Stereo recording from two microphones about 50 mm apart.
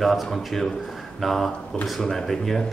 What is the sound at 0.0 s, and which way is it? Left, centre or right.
Speech, centre.